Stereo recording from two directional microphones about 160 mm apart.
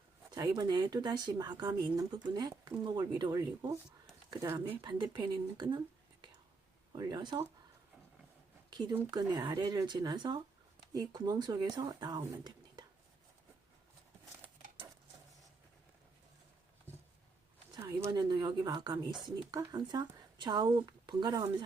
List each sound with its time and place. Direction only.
0.3 s speech: 25° right (ahead or behind)
6.9 s speech: 25° right (ahead or behind)
8.7 s speech: 25° right (ahead or behind)
17.7 s speech: 25° right (ahead or behind)